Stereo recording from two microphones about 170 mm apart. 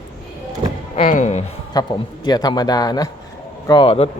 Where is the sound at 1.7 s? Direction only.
25° left (ahead or behind).